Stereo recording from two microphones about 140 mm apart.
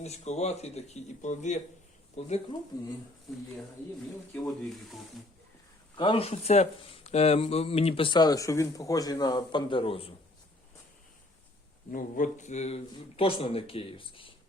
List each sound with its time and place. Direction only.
0.0 s a man's voice: 50° left (ahead or behind)
4.4 s speech: centre (ahead or behind)
6.0 s speech: 40° left (ahead or behind)
11.9 s a man's voice: 75° left (ahead or behind); by 14.3 s 40° left (ahead or behind)